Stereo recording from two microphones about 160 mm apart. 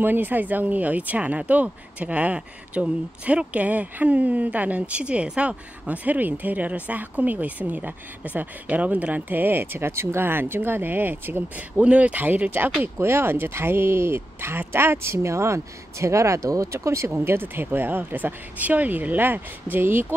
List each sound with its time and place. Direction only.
0.0 s speech: 10° right (ahead or behind)